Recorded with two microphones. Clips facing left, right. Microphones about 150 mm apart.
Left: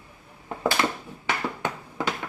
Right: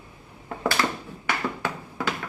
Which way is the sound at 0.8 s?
20° left (ahead or behind).